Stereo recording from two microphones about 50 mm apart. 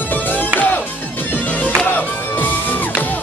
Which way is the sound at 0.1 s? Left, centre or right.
Left.